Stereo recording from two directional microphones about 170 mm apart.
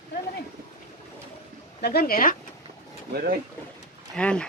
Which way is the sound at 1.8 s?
65° left (ahead or behind).